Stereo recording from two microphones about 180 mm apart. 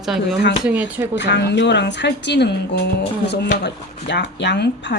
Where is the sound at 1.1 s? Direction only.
75° left (ahead or behind).